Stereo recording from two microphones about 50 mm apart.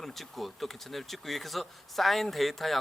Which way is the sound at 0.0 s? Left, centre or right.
Centre.